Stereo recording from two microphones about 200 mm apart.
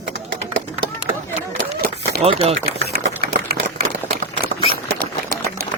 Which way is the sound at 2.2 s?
30° right (ahead or behind).